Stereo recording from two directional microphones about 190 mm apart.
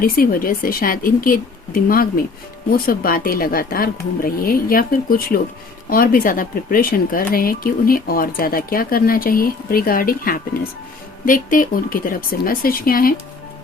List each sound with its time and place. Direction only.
0.0 s speech: 50° left (ahead or behind)